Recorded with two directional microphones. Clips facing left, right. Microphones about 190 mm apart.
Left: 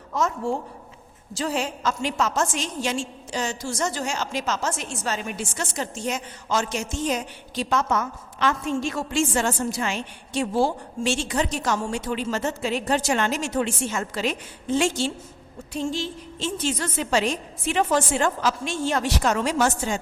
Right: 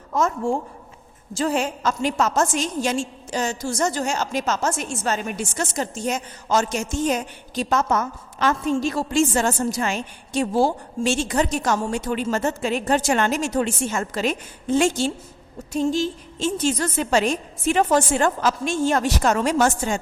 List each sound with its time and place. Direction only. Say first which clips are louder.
0.1 s a woman's voice: right 3 dB; 50° right (ahead or behind)